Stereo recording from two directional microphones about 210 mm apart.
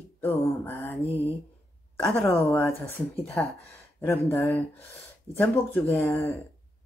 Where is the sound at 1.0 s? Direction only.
30° left (ahead or behind).